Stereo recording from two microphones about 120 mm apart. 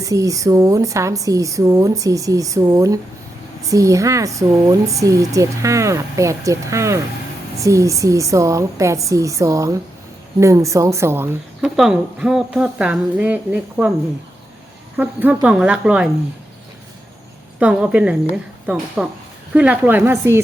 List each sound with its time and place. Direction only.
0.0 s speech: 30° right (ahead or behind)
11.6 s a woman's voice: 5° right (ahead or behind)
14.9 s a woman's voice: 10° right (ahead or behind)
17.6 s a woman's voice: 10° right (ahead or behind)